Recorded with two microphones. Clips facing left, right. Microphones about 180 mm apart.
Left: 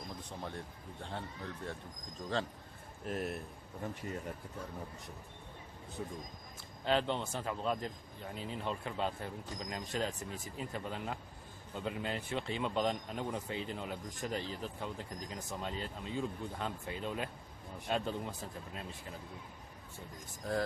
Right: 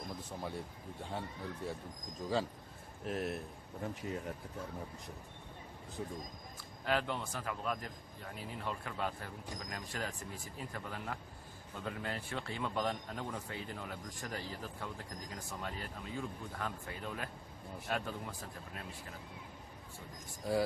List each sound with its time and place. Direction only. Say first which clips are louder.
0.4 s speech: right 1 dB; 5° right (ahead or behind)
3.1 s speech: even; centre (ahead or behind)
6.8 s speech: left 3 dB; 25° left (ahead or behind)